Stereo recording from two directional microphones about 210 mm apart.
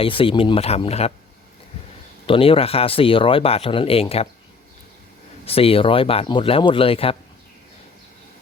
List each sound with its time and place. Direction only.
0.0 s speech: 25° left (ahead or behind)
2.2 s speech: 25° left (ahead or behind)
5.5 s speech: 25° left (ahead or behind)